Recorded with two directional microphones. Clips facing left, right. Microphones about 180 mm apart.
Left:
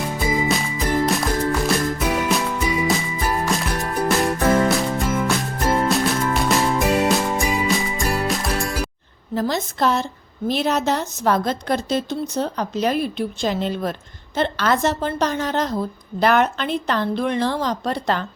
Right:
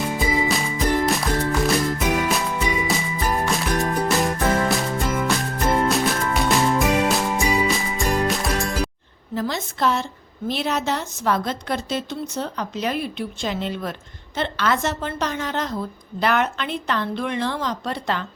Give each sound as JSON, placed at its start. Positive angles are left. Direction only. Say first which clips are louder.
{"t": 0.4, "sound": "music", "louder": "even", "side_deg": 0}
{"t": 9.3, "sound": "a sound", "louder": "left 3 dB", "side_deg": 40}
{"t": 10.5, "sound": "a woman's voice", "louder": "left 3 dB", "side_deg": 40}